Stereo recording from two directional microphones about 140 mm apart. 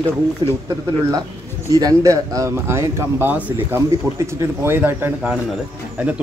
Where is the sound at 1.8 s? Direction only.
25° right (ahead or behind).